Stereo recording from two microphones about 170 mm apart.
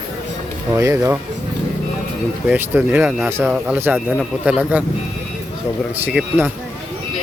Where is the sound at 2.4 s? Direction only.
10° right (ahead or behind).